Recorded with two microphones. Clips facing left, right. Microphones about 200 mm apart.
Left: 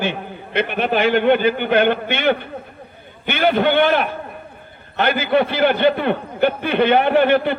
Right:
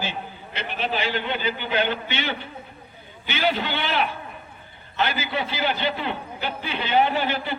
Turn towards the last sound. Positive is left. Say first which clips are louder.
# left 11 dB
turn(degrees=60)  # may be behind; listen again after turning